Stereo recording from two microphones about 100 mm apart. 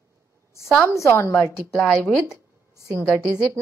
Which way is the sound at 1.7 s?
5° left (ahead or behind).